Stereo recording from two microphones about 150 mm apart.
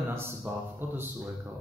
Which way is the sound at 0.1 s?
15° right (ahead or behind).